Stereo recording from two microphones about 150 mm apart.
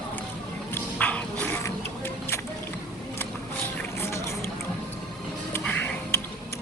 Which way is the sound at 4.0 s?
20° left (ahead or behind).